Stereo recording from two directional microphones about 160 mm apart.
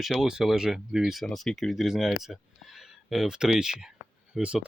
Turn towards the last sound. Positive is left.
turn(degrees=-5)  # may be behind; listen again after turning